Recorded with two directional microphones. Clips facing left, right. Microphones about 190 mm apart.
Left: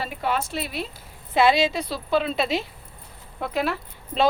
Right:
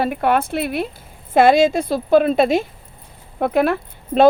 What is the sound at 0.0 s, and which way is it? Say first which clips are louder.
Speech: right 9 dB; 55° right (ahead or behind).